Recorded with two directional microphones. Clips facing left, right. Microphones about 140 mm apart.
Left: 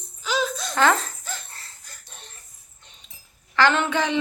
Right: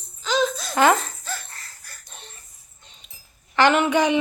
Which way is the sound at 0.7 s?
15° right (ahead or behind).